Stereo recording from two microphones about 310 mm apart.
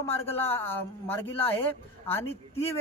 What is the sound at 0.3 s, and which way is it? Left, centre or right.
Speech, centre.